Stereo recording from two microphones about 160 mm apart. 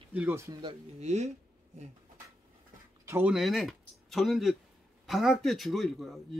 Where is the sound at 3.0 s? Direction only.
15° right (ahead or behind).